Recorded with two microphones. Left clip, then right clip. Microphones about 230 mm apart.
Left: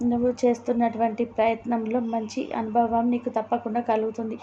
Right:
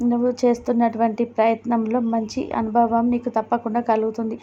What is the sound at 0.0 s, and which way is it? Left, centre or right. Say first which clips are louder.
A woman's voice: right 3 dB; right.